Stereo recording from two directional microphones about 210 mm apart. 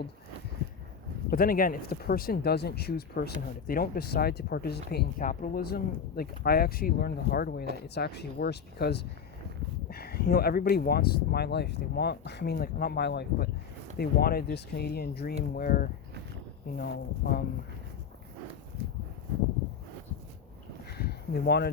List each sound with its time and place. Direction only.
1.3 s speech: 45° left (ahead or behind)
7.6 s speech: 50° right (ahead or behind)
7.9 s speech: 50° left (ahead or behind)
20.9 s a sound: 50° left (ahead or behind)